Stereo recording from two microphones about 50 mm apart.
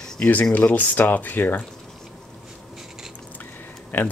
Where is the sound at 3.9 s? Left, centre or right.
Left.